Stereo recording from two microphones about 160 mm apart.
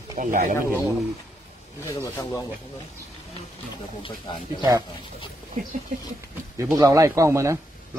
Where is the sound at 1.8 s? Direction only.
20° left (ahead or behind).